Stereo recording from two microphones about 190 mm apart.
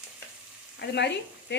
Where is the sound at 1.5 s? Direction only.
65° left (ahead or behind).